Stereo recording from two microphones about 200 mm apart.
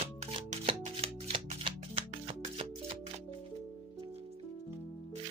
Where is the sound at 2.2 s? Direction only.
30° right (ahead or behind).